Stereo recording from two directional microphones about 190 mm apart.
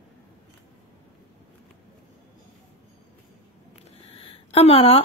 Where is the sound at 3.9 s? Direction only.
30° left (ahead or behind).